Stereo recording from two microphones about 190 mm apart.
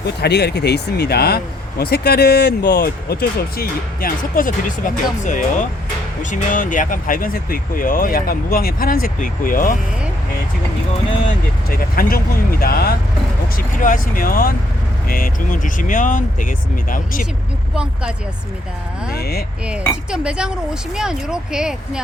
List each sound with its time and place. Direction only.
0.0 s speech: 60° left (ahead or behind)
11.7 s speech: 50° left (ahead or behind)
19.1 s speech: 55° left (ahead or behind)
20.1 s speech: 5° right (ahead or behind)